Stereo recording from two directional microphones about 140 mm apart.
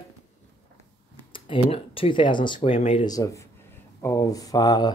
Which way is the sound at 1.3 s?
40° left (ahead or behind).